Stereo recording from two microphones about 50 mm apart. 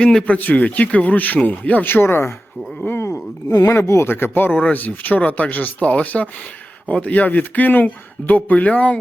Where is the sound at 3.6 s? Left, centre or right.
Left.